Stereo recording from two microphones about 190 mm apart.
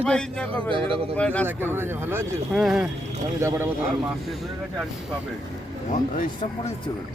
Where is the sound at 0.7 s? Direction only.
30° right (ahead or behind).